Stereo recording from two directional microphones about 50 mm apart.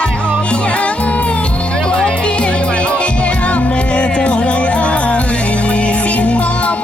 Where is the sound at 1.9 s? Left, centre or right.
Left.